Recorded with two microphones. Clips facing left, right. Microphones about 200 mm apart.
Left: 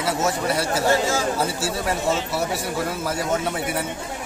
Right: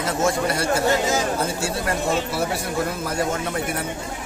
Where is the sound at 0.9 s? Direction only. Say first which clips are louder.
Left 2 dB; 20° right (ahead or behind).